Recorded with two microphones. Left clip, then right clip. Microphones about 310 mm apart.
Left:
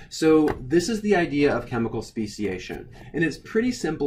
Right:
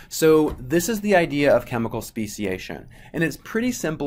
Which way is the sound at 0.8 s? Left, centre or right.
Centre.